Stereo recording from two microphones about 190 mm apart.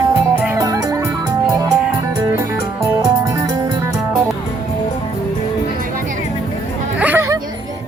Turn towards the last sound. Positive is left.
turn(degrees=-10)  # may be behind; listen again after turning